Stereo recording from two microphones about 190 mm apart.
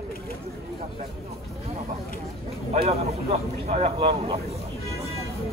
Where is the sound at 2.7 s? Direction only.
30° right (ahead or behind).